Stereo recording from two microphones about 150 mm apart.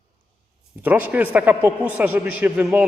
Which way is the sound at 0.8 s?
10° right (ahead or behind).